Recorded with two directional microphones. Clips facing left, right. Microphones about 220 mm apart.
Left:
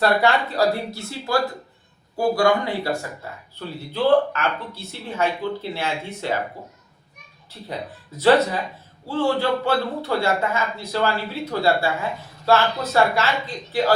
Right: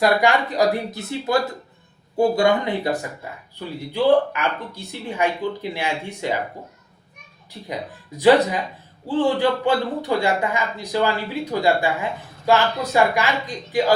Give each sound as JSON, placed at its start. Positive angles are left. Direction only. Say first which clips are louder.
{"t": 0.0, "sound": "a man's voice", "louder": "right 1 dB", "side_deg": -15}
{"t": 7.7, "sound": "a man's voice", "louder": "right 1 dB", "side_deg": -15}